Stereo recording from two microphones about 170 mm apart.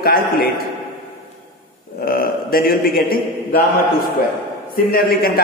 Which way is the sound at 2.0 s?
60° left (ahead or behind).